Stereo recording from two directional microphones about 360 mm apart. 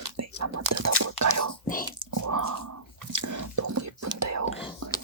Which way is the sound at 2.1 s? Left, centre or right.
Right.